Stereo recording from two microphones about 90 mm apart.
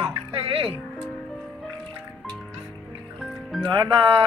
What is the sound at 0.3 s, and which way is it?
Music, 90° right.